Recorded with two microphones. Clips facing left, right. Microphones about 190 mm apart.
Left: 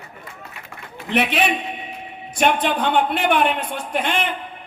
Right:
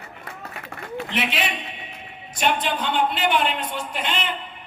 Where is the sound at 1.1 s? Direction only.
60° left (ahead or behind).